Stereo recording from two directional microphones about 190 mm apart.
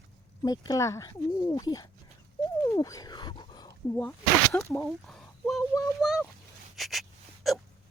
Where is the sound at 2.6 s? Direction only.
15° left (ahead or behind).